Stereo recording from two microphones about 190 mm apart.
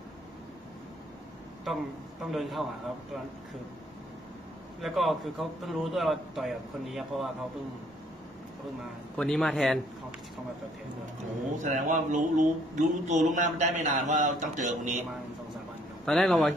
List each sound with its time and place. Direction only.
2.3 s a man's voice: centre (ahead or behind)
4.8 s a man's voice: centre (ahead or behind)
9.1 s a man's voice: centre (ahead or behind)
11.5 s speech: 40° right (ahead or behind)
16.1 s a man's voice: centre (ahead or behind)